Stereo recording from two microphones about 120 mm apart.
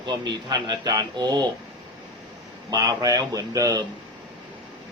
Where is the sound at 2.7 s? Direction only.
35° right (ahead or behind).